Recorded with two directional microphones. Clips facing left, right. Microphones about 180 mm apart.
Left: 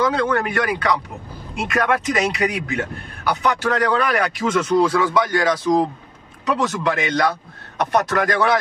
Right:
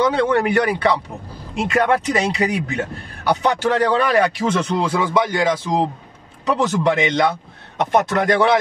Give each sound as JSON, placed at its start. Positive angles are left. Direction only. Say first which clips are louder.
{"t": 0.0, "sound": "speech", "louder": "right 3 dB", "side_deg": -25}